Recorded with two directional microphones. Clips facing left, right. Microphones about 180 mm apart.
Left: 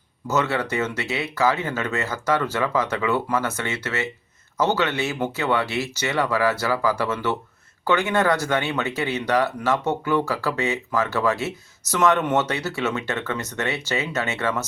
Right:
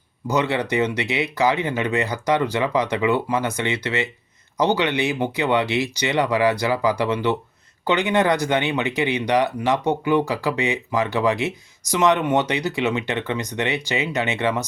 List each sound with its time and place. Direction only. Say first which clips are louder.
0.3 s speech: right 2 dB; 15° right (ahead or behind)